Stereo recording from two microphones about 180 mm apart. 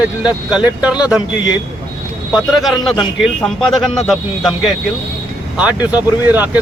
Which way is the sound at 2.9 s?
Centre (ahead or behind).